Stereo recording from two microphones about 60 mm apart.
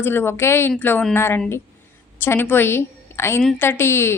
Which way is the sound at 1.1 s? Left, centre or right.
Left.